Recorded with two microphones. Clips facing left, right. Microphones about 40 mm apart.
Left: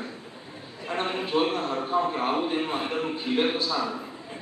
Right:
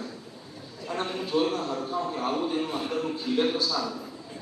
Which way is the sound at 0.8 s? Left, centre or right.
Left.